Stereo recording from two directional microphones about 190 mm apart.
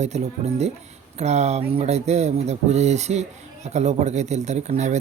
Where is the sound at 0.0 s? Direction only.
35° right (ahead or behind).